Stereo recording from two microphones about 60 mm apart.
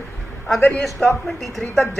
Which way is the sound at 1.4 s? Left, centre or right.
Centre.